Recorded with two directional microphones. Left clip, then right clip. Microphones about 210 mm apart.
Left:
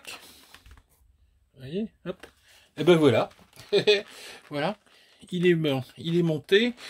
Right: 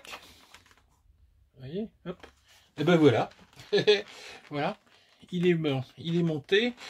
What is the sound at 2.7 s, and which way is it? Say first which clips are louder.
Speech: left 3 dB; 50° left (ahead or behind).